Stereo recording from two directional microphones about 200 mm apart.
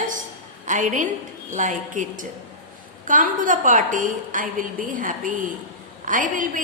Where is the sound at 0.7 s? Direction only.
40° right (ahead or behind).